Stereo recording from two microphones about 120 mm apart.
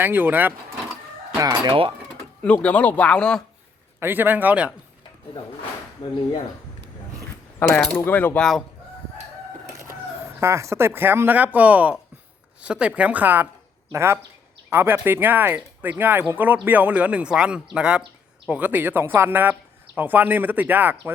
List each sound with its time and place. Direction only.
0.0 s speech: 15° right (ahead or behind)
1.4 s speech: 30° right (ahead or behind)
2.4 s speech: 10° left (ahead or behind)
4.0 s speech: 15° right (ahead or behind)
7.7 s speech: 5° left (ahead or behind)
10.4 s speech: 25° right (ahead or behind)